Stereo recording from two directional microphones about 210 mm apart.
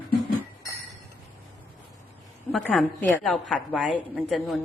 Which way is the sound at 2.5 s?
5° left (ahead or behind).